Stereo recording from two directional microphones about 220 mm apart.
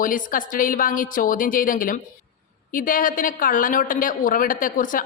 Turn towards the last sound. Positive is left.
turn(degrees=40)  # may be behind; listen again after turning